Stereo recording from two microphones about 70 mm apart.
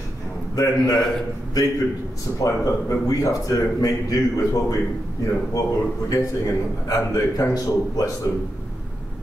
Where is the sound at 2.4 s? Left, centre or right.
Left.